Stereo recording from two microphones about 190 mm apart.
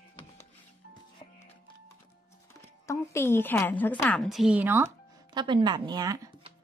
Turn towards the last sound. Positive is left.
turn(degrees=-20)  # may be behind; listen again after turning